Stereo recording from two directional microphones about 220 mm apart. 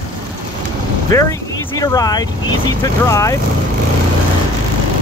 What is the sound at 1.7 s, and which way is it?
Speech, 15° left (ahead or behind).